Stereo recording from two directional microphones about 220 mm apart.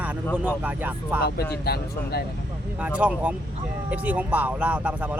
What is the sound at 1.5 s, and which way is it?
Speech, 45° left (ahead or behind).